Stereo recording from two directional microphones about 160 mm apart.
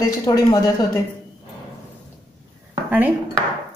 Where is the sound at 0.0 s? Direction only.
20° left (ahead or behind).